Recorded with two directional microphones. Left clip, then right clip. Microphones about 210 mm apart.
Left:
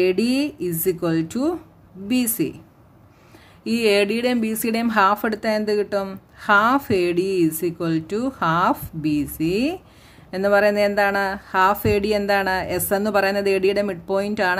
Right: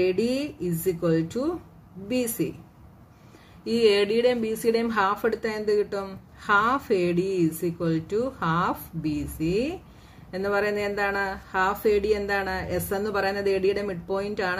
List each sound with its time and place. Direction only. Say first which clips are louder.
0.0 s a woman's voice: left 5 dB; 45° left (ahead or behind)
3.6 s a woman's voice: left 2 dB; 45° left (ahead or behind)